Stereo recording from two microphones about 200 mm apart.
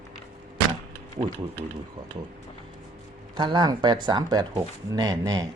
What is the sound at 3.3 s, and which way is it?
Speech, 20° right (ahead or behind).